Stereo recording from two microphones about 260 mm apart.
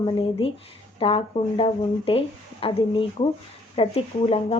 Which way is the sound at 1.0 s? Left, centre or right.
Left.